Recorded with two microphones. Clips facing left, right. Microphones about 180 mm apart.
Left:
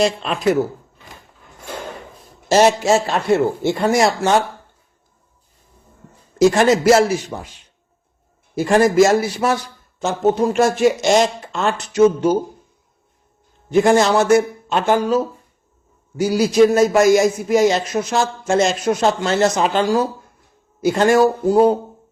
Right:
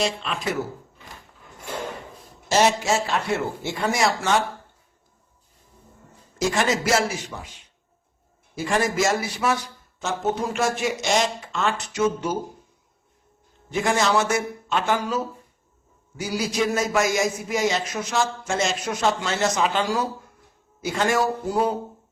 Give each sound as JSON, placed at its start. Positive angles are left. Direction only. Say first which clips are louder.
{"t": 0.0, "sound": "speech", "louder": "left 7 dB", "side_deg": 40}
{"t": 2.5, "sound": "a man's voice", "louder": "left 7 dB", "side_deg": 35}
{"t": 6.5, "sound": "a man's voice", "louder": "left 7 dB", "side_deg": 35}
{"t": 8.8, "sound": "a man's voice", "louder": "left 11 dB", "side_deg": 35}
{"t": 13.7, "sound": "a man's voice", "louder": "left 9 dB", "side_deg": 35}